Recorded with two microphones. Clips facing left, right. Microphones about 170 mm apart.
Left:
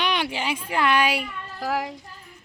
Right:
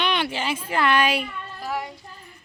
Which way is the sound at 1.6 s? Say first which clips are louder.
Left 3 dB; 90° left.